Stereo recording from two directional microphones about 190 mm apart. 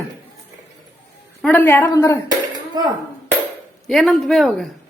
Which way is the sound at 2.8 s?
20° right (ahead or behind).